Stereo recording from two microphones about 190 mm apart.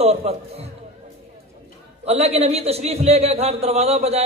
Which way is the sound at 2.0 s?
35° right (ahead or behind).